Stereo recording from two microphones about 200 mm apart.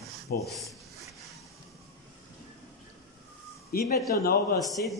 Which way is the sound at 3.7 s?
50° left (ahead or behind).